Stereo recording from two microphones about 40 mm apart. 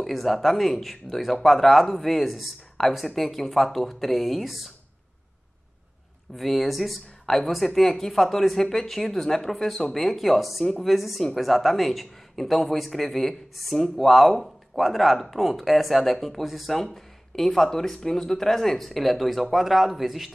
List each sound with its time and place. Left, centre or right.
0.0 s speech: centre
6.3 s speech: centre